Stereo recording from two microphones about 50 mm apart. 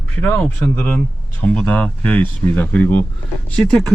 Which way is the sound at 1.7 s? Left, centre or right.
Left.